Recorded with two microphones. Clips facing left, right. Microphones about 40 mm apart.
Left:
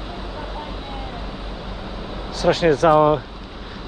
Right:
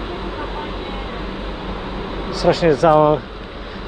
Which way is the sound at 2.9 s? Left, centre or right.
Right.